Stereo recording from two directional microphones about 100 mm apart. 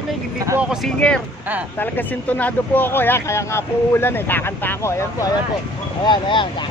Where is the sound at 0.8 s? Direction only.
10° left (ahead or behind); by 5.3 s 30° left (ahead or behind).